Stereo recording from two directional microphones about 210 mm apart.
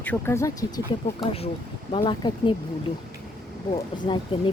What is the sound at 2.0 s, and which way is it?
Speech, 20° left (ahead or behind).